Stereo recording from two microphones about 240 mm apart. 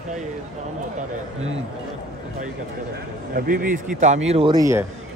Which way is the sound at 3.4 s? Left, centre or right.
Right.